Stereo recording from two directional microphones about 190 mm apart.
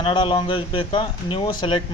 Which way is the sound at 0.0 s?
25° left (ahead or behind).